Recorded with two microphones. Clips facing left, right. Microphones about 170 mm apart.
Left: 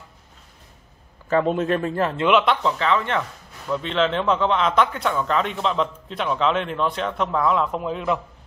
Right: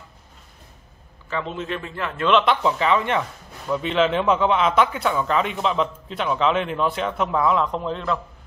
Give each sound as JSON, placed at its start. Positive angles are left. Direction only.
{"t": 1.3, "sound": "speech", "side_deg": 50}
{"t": 2.1, "sound": "speech", "side_deg": 15}
{"t": 2.4, "sound": "a man's voice", "side_deg": 0}
{"t": 2.8, "sound": "a man's voice", "side_deg": -15}